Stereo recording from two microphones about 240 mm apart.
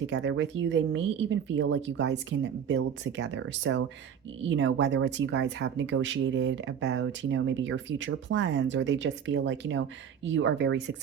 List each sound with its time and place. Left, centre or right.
0.1 s speech: right